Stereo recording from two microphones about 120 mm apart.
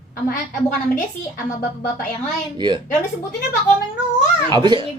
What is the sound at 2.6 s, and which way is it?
Speech, 40° right (ahead or behind).